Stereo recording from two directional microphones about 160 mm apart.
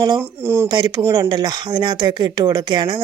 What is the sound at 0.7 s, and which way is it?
A woman's voice, 25° right (ahead or behind).